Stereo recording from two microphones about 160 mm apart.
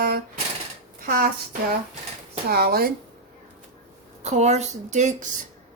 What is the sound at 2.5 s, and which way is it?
Speech, 75° right (ahead or behind).